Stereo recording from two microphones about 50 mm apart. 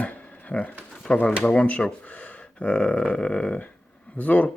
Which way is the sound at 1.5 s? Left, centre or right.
Left.